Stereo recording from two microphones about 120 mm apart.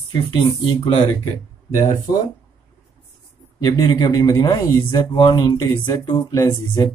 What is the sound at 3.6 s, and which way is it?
Speech, 35° left (ahead or behind).